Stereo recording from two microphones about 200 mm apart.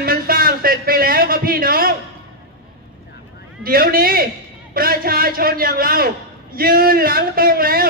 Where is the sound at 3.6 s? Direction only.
45° right (ahead or behind).